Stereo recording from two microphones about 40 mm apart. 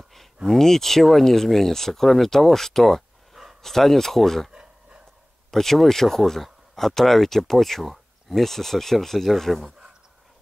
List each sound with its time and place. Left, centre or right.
0.5 s speech: centre
4.5 s a sound: right
5.5 s speech: centre